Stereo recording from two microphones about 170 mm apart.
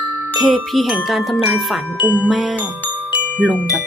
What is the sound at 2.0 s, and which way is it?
Music, 10° left (ahead or behind).